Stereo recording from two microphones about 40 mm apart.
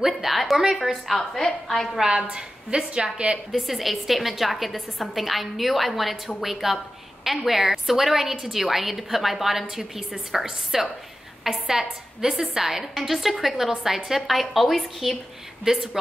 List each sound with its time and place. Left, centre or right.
0.0 s a woman's voice: centre
2.3 s a woman's voice: right
3.5 s a woman's voice: centre
15.6 s a woman's voice: centre